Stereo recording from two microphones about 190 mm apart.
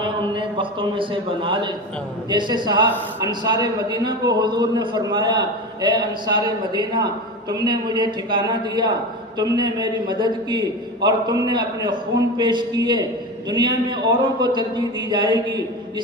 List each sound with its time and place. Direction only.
0.0 s a man's voice: 25° right (ahead or behind)